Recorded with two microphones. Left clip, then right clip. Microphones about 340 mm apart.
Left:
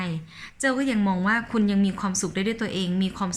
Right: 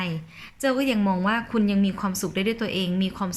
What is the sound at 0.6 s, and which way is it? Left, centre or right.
A woman's voice, centre.